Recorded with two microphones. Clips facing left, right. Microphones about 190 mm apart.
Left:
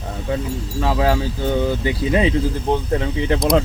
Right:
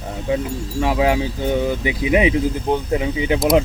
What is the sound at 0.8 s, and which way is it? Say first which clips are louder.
Speech: right 1 dB; 15° right (ahead or behind).